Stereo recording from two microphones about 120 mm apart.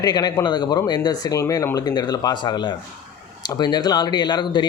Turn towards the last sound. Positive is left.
turn(degrees=40)  # may be behind; listen again after turning